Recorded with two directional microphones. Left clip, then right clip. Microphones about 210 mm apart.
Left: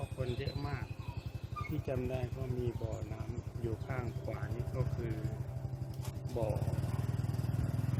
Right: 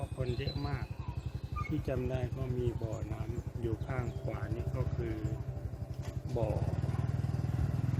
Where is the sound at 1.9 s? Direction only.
10° right (ahead or behind).